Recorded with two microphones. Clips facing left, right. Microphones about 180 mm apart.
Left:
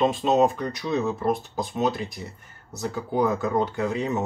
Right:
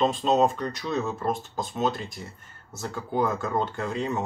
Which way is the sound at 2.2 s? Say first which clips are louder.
Left 3 dB; 10° left (ahead or behind).